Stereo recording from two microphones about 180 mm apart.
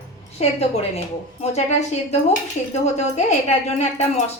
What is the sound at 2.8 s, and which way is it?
A woman's voice, 40° left (ahead or behind).